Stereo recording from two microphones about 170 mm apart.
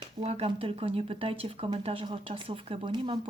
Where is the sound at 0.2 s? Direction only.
35° right (ahead or behind).